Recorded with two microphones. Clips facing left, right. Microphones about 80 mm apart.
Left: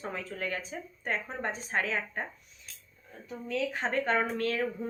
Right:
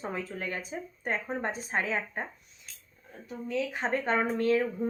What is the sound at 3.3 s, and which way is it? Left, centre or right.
A woman's voice, centre.